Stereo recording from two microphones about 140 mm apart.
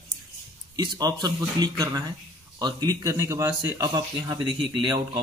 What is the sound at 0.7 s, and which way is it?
Speech, 30° right (ahead or behind).